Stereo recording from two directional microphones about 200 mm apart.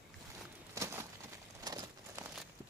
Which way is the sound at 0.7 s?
15° right (ahead or behind).